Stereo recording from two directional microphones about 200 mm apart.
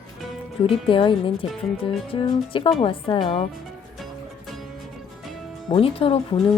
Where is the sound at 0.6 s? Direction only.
25° left (ahead or behind).